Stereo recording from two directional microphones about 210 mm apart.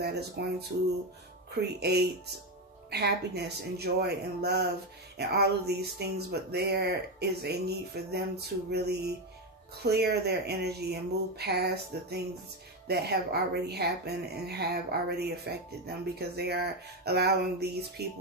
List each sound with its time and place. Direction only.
0.0 s speech: 50° right (ahead or behind)